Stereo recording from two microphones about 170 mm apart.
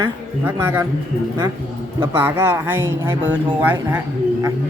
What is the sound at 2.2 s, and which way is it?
Speech, 15° right (ahead or behind).